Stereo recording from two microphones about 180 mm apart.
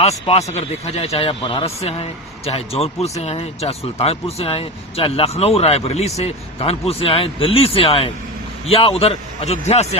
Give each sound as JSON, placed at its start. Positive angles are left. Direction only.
{"t": 0.0, "sound": "speech", "side_deg": 35}